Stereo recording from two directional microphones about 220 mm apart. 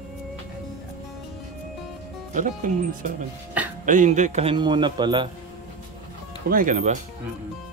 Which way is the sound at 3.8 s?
35° right (ahead or behind).